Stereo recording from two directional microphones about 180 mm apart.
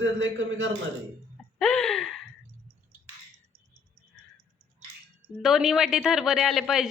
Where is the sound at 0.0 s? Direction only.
90° right.